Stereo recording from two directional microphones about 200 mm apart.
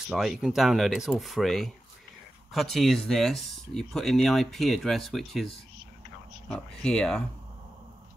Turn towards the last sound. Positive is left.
turn(degrees=5)  # may be behind; listen again after turning